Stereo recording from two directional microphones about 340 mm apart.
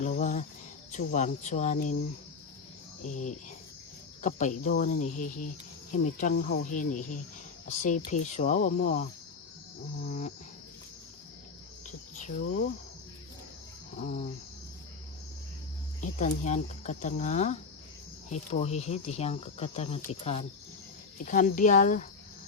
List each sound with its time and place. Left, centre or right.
0.0 s speech: left
3.0 s speech: left
11.9 s speech: left
14.0 s speech: left
16.0 s speech: left